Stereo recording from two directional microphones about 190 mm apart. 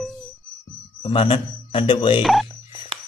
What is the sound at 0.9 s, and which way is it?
Speech, 30° left (ahead or behind).